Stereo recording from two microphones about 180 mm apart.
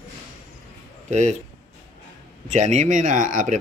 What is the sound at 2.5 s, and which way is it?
Speech, 40° right (ahead or behind).